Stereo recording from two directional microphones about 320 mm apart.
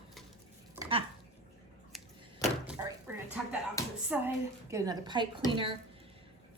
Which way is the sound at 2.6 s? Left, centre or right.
Centre.